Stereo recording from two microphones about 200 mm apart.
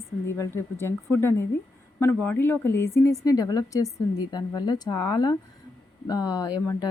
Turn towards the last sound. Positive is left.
turn(degrees=20)  # may be behind; listen again after turning